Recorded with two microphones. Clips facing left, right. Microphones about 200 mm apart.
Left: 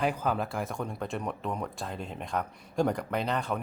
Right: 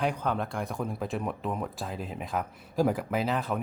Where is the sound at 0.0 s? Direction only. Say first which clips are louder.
Even; 5° left (ahead or behind).